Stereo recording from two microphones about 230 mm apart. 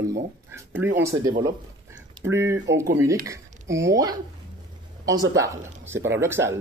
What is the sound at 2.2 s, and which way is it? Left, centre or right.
A man's voice, centre.